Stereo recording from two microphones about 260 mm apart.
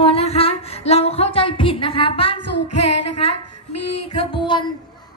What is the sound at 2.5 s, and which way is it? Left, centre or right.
Female singing, left.